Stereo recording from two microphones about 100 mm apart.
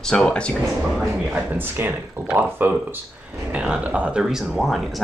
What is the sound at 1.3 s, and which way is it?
Speech, 20° right (ahead or behind).